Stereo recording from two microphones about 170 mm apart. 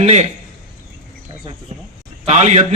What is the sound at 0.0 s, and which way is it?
Speech, 40° right (ahead or behind).